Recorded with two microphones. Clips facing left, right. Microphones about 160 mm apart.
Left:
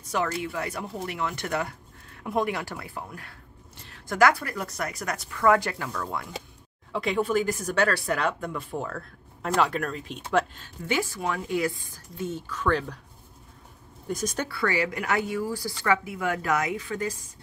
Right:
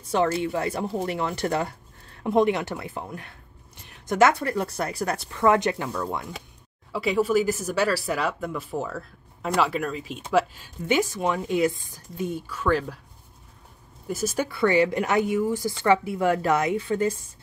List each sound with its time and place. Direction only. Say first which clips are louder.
0.0 s speech: right 5 dB; 30° right (ahead or behind)
6.9 s speech: right 3 dB; 5° right (ahead or behind)
14.0 s speech: right 3 dB; 5° right (ahead or behind)
14.5 s speech: right 9 dB; 20° right (ahead or behind)